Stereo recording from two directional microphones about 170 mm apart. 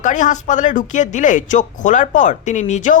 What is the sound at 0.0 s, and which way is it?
Speech, 50° left (ahead or behind).